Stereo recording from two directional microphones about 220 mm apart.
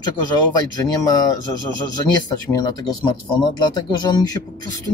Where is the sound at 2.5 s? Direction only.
20° left (ahead or behind).